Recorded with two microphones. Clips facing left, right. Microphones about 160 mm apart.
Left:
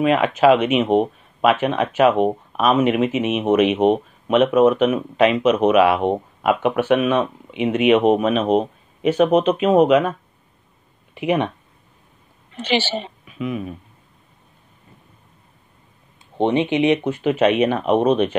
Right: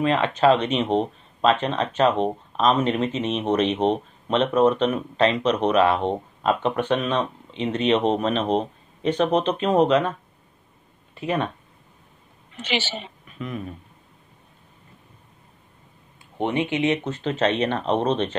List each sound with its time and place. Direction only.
0.0 s speech: 10° left (ahead or behind)
11.1 s speech: 15° left (ahead or behind)
12.5 s a woman's voice: 35° left (ahead or behind)
13.3 s speech: 5° left (ahead or behind)
16.3 s speech: 20° left (ahead or behind)